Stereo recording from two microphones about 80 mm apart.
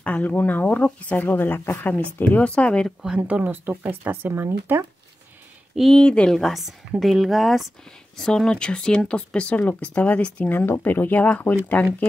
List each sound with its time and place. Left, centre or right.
0.0 s speech: centre
3.2 s speech: centre
5.8 s speech: centre